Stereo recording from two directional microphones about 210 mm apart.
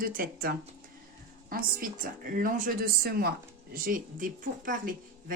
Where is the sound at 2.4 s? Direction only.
40° right (ahead or behind).